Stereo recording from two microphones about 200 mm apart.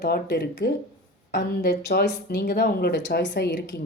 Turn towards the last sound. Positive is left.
turn(degrees=55)  # may be behind; listen again after turning